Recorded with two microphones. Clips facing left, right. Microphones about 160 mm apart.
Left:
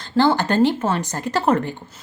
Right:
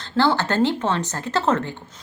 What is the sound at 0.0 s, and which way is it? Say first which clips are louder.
A woman's voice: left 2 dB; 15° left (ahead or behind).